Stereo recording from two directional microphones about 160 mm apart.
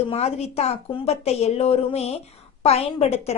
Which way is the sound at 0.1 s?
40° left (ahead or behind).